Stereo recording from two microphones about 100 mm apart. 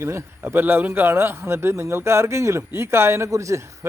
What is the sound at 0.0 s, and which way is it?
A man's voice, 25° right (ahead or behind).